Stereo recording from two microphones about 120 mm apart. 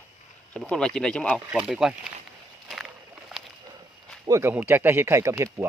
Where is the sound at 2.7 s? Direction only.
5° right (ahead or behind).